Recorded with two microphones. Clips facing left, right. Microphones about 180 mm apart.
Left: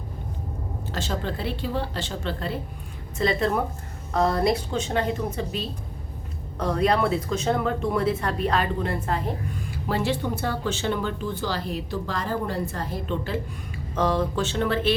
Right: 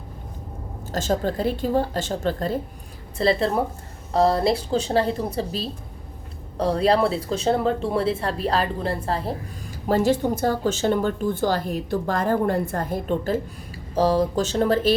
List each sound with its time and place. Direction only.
0.9 s speech: 45° right (ahead or behind)
3.2 s speech: 30° right (ahead or behind)
13.9 s speech: 35° right (ahead or behind)